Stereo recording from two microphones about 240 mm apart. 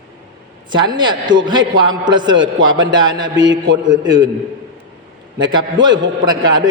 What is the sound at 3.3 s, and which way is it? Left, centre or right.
Speech, right.